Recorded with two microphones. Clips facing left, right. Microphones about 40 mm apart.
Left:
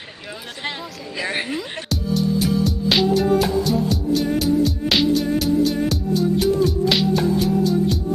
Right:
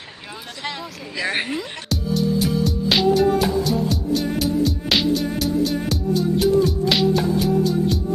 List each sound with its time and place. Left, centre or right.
1.2 s a woman's voice: centre
1.5 s music: centre